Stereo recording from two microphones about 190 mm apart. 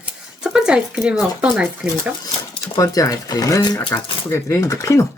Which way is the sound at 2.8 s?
20° left (ahead or behind).